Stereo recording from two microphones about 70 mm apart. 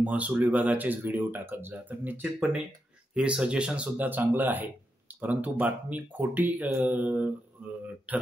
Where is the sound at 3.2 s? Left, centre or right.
Centre.